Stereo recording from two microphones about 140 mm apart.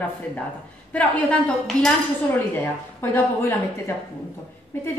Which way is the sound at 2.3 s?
15° left (ahead or behind).